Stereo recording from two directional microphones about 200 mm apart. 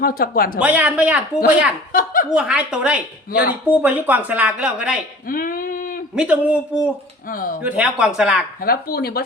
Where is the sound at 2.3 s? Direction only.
5° right (ahead or behind).